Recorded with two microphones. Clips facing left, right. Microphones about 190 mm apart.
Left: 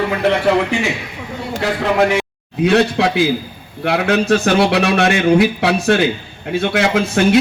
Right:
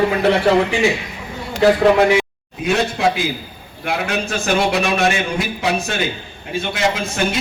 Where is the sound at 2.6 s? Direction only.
65° left (ahead or behind).